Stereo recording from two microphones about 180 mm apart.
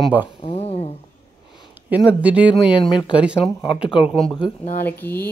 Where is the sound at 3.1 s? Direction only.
5° right (ahead or behind); by 5.3 s 10° left (ahead or behind).